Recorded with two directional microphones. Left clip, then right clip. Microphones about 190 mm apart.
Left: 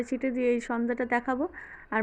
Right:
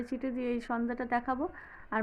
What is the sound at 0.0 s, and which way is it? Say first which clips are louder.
A woman's voice: left 8 dB; 25° left (ahead or behind).